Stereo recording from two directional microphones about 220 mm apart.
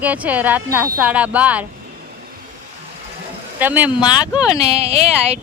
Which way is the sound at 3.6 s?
10° right (ahead or behind).